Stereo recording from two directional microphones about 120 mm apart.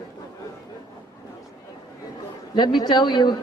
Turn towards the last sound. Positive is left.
turn(degrees=40)  # may be behind; listen again after turning